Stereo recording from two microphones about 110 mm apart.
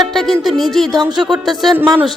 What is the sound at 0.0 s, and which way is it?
Music, centre (ahead or behind).